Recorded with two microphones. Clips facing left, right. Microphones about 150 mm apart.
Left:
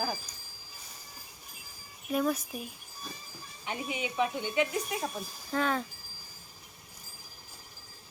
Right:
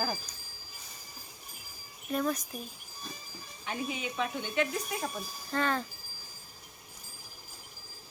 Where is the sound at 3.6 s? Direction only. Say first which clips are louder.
Even; 15° left (ahead or behind).